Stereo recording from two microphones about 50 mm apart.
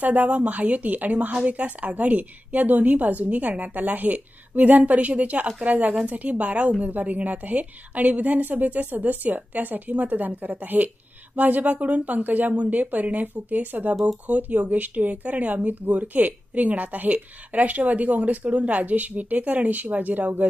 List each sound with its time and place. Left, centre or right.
0.0 s speech: right